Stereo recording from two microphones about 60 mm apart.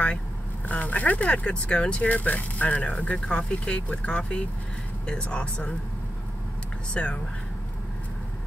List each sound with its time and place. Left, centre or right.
0.7 s speech: left
6.9 s speech: centre